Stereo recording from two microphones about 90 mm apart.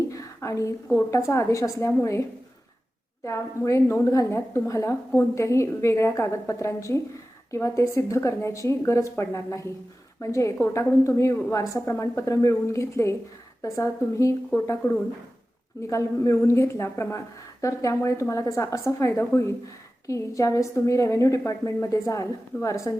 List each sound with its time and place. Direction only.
0.1 s a woman's voice: 35° left (ahead or behind)
3.2 s a woman's voice: 35° left (ahead or behind)